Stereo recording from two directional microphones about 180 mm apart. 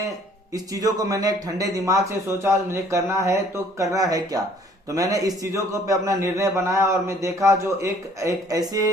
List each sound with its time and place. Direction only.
0.5 s a man's voice: 20° right (ahead or behind)